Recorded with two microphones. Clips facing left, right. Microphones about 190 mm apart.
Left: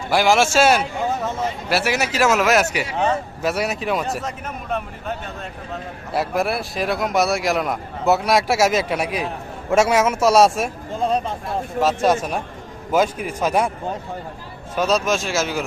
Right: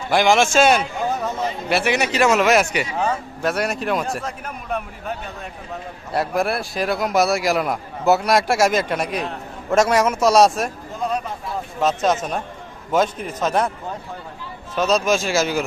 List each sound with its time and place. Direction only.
0.1 s a man's voice: 5° left (ahead or behind)
6.1 s a man's voice: centre (ahead or behind)
10.9 s speech: 30° left (ahead or behind)
11.8 s a man's voice: 10° left (ahead or behind)
14.8 s a man's voice: 5° left (ahead or behind)